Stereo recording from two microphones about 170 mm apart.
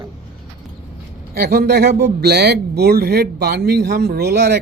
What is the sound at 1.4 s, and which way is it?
Speech, 65° right (ahead or behind).